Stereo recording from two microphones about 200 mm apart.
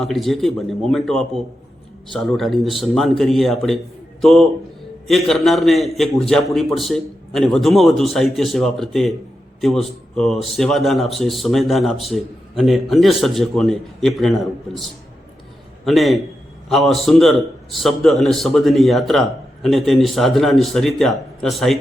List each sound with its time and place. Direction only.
0.0 s a man's voice: centre (ahead or behind)
10.2 s a man's voice: centre (ahead or behind)